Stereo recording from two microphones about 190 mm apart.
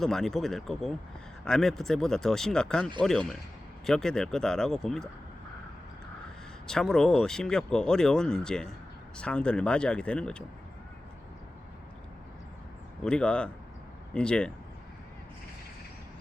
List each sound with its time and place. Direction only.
0.0 s speech: centre (ahead or behind)
6.7 s speech: centre (ahead or behind)
13.0 s speech: 5° left (ahead or behind)